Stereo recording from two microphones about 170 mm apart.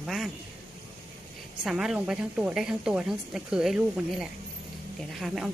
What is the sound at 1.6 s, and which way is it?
A woman's voice, 5° right (ahead or behind).